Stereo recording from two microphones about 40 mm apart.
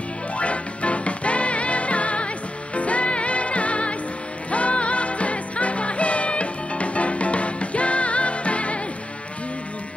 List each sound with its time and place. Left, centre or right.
0.4 s music: left